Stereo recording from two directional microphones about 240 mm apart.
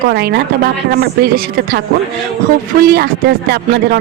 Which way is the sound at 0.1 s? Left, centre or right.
Right.